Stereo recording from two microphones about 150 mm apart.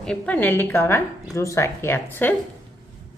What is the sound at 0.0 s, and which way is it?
A woman's voice, 5° left (ahead or behind).